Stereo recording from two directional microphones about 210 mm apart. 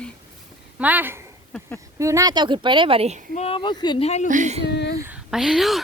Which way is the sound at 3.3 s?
25° left (ahead or behind).